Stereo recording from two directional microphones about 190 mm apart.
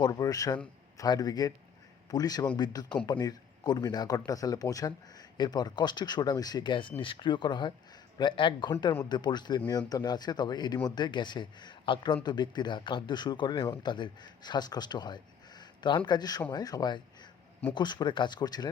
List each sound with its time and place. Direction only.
0.0 s a man's voice: 20° left (ahead or behind)